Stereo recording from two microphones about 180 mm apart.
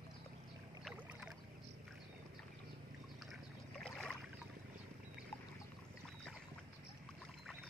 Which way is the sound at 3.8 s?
5° left (ahead or behind).